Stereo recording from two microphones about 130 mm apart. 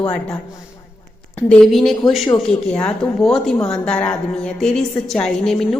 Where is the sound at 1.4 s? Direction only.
5° left (ahead or behind).